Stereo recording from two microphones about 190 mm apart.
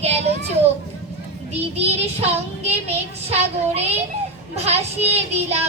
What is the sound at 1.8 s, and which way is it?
Child singing, 35° right (ahead or behind).